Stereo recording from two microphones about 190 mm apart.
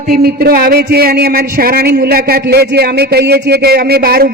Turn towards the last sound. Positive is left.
turn(degrees=-55)  # may be behind; listen again after turning